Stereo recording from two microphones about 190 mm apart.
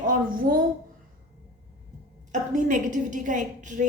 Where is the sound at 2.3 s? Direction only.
40° right (ahead or behind).